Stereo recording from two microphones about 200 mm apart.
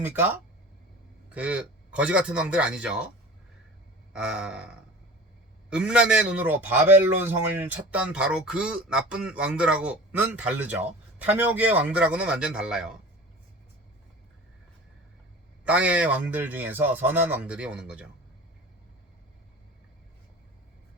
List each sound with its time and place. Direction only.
0.0 s a man's voice: 10° right (ahead or behind)
4.1 s a man's voice: 5° right (ahead or behind)
15.6 s a man's voice: 5° right (ahead or behind)